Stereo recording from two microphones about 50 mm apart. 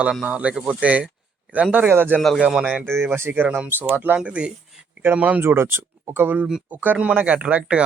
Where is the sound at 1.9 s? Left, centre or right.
Right.